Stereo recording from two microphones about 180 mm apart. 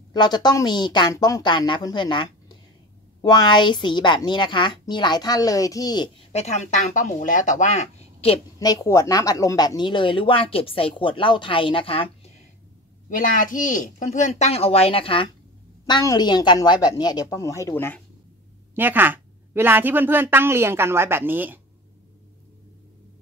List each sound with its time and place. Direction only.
0.1 s speech: 25° left (ahead or behind)
6.3 s speech: 40° left (ahead or behind)
8.5 s speech: 20° left (ahead or behind)
13.4 s speech: 45° left (ahead or behind); by 18.0 s 10° left (ahead or behind)
18.8 s a woman's voice: 10° right (ahead or behind)